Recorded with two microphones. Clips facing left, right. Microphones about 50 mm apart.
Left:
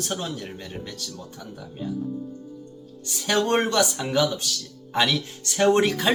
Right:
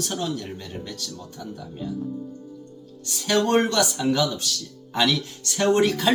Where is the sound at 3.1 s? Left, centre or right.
Centre.